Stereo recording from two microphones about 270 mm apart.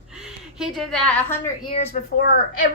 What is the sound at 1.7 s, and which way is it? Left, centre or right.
Speech, left.